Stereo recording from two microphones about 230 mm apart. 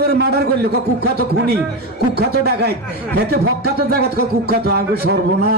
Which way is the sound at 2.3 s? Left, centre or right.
Right.